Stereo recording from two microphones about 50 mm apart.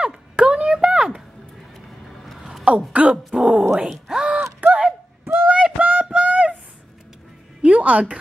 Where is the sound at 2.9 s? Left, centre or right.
Right.